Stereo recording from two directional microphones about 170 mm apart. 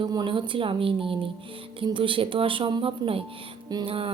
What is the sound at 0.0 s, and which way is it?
A woman's voice, 25° right (ahead or behind).